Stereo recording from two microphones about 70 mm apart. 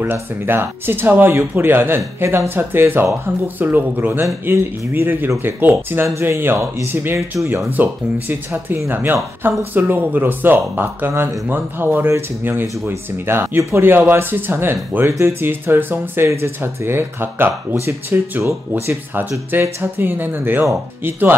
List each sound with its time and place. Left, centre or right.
0.0 s speech: right
19.6 s speech: right